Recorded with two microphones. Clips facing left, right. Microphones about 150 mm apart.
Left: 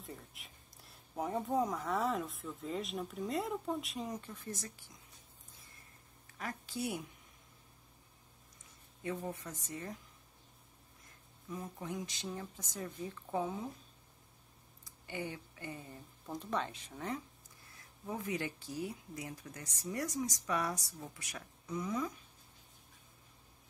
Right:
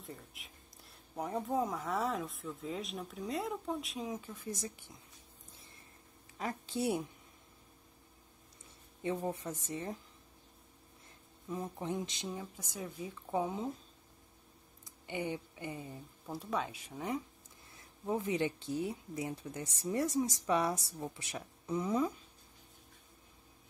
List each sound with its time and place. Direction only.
0.0 s speech: centre (ahead or behind); by 4.9 s 20° right (ahead or behind)
6.3 s a woman's voice: 25° right (ahead or behind)
9.0 s speech: 25° right (ahead or behind)
11.5 s speech: 25° right (ahead or behind)
14.9 s speech: 20° right (ahead or behind)
17.7 s speech: 25° right (ahead or behind)